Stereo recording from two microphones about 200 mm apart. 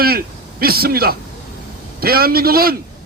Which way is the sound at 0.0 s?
50° right (ahead or behind).